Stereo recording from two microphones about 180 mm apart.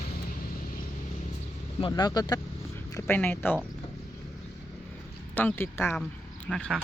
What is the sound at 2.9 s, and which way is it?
Speech, 10° left (ahead or behind).